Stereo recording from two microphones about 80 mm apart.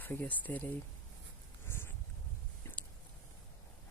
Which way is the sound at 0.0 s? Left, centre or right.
Left.